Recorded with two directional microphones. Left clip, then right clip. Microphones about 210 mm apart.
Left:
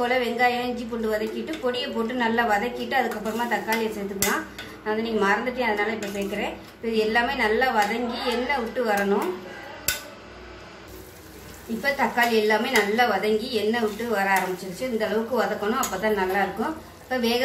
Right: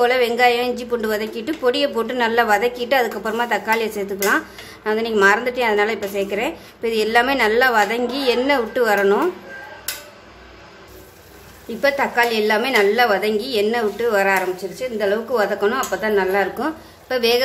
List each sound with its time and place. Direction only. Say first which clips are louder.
0.0 s a woman's voice: right 7 dB; 55° right (ahead or behind)
4.8 s a woman's voice: right 8 dB; 55° right (ahead or behind)
11.8 s a woman's voice: right 5 dB; 50° right (ahead or behind)